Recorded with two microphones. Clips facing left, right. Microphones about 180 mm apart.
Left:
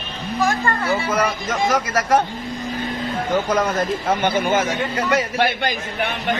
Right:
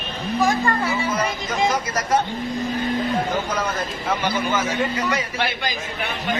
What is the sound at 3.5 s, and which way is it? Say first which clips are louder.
Speech: left 6 dB; 45° left (ahead or behind).